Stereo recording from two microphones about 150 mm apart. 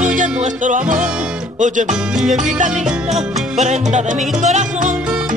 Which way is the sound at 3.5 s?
50° right (ahead or behind).